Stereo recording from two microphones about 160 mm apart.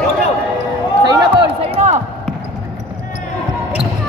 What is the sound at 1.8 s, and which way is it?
Basketball bounce, 45° right (ahead or behind).